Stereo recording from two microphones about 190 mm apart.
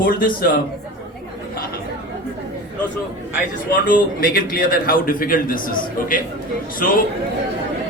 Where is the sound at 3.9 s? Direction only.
50° left (ahead or behind).